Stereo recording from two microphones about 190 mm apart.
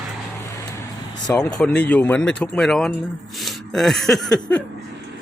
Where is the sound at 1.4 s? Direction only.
5° left (ahead or behind).